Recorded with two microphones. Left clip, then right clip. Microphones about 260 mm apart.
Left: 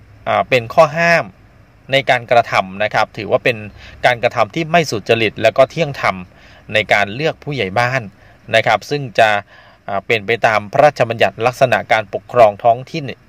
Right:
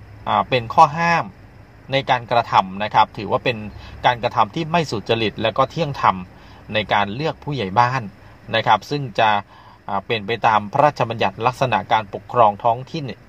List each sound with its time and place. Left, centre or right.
0.2 s a man's voice: left